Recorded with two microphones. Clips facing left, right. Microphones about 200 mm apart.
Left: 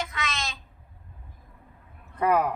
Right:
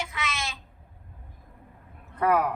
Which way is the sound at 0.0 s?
10° right (ahead or behind).